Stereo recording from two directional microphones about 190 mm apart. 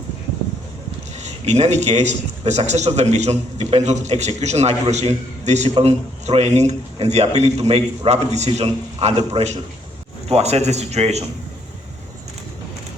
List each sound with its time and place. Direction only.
1.2 s a man's voice: 35° right (ahead or behind)